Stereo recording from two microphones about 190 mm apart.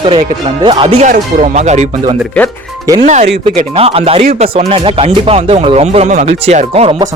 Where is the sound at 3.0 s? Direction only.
40° right (ahead or behind).